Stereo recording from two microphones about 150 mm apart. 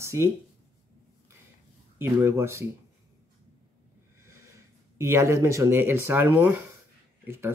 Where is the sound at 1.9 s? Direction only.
15° right (ahead or behind).